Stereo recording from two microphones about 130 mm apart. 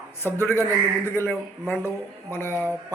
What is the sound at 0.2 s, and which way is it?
Speech, 15° left (ahead or behind).